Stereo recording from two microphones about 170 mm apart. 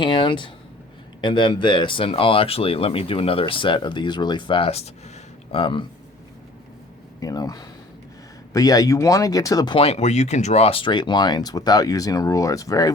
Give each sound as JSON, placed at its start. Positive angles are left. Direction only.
{"t": 0.0, "sound": "speech", "side_deg": 30}
{"t": 7.2, "sound": "speech", "side_deg": 20}
{"t": 9.7, "sound": "speech", "side_deg": 35}